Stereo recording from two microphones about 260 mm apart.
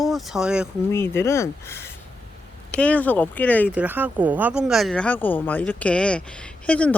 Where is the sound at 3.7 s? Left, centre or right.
Centre.